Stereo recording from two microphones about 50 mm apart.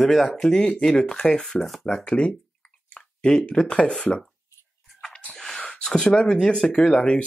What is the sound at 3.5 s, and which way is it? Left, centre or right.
Speech, left.